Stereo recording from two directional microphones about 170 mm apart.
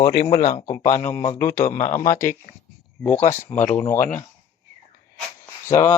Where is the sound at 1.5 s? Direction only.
45° left (ahead or behind).